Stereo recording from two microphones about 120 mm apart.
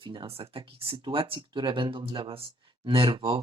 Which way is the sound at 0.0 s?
40° right (ahead or behind).